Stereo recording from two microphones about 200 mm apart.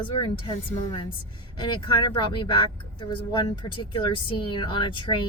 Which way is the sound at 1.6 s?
25° left (ahead or behind).